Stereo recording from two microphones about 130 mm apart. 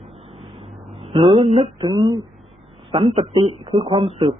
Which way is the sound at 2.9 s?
45° right (ahead or behind).